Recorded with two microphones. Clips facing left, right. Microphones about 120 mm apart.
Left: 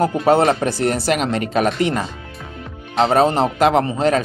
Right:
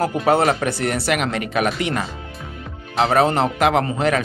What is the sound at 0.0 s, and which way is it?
Speech, 30° left (ahead or behind).